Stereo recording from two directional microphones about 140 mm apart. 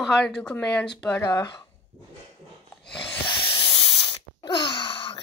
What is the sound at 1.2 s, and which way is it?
Speech, 25° left (ahead or behind).